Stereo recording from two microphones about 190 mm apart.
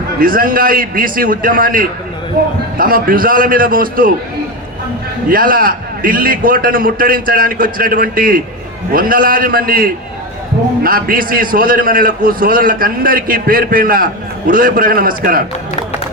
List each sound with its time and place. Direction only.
0.2 s a man's voice: 50° right (ahead or behind)
5.3 s a man's voice: 50° right (ahead or behind)